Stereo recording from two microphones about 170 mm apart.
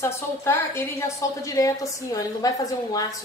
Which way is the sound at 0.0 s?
15° left (ahead or behind).